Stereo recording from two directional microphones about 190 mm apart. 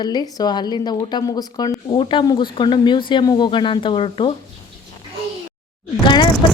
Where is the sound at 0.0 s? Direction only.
20° left (ahead or behind).